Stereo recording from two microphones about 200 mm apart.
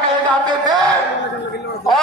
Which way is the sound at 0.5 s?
20° right (ahead or behind).